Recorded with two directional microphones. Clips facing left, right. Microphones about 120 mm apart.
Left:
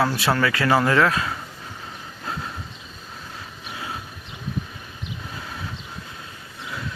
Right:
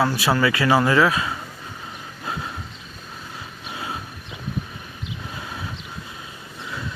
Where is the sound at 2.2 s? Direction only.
5° right (ahead or behind).